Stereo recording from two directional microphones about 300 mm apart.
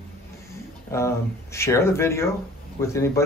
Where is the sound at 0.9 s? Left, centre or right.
Centre.